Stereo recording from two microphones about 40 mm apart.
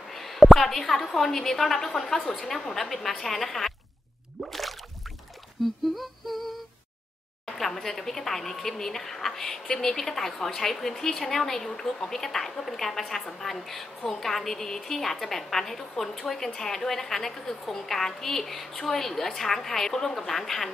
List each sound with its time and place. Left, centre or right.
0.1 s a woman's voice: centre
4.4 s a sound: centre
5.6 s speech: centre
5.9 s humming: centre
7.4 s speech: centre